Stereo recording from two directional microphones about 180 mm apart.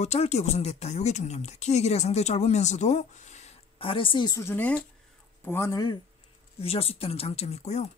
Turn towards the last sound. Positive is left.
turn(degrees=35)  # may be behind; listen again after turning